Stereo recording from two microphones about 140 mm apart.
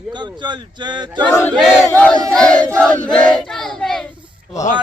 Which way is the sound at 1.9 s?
10° left (ahead or behind).